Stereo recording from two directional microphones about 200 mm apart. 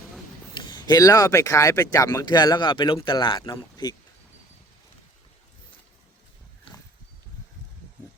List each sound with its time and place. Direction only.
0.5 s speech: 20° left (ahead or behind)